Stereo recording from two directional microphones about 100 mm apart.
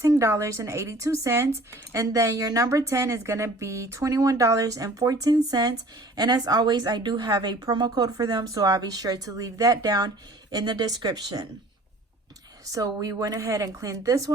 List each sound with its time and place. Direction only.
0.0 s speech: 30° right (ahead or behind)
12.7 s speech: 35° right (ahead or behind)